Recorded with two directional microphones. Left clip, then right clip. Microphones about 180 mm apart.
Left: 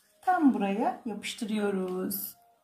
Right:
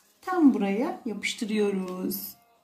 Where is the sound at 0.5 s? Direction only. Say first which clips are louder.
Right 1 dB; 35° left (ahead or behind).